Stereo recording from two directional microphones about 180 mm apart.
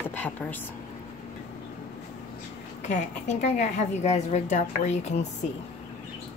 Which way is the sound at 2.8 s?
40° left (ahead or behind).